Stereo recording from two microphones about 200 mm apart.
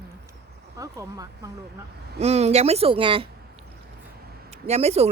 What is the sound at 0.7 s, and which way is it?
Speech, 15° right (ahead or behind).